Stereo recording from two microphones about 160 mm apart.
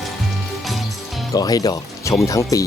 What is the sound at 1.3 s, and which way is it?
Speech, 25° left (ahead or behind).